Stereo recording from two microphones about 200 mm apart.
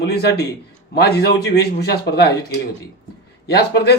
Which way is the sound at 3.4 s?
55° left (ahead or behind).